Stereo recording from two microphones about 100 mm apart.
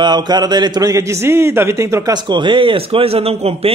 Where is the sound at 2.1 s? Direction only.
50° right (ahead or behind); by 3.7 s 85° right.